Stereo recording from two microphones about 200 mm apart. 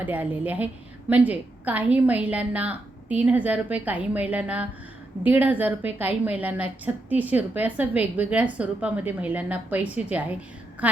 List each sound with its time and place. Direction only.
0.0 s a woman's voice: 10° right (ahead or behind)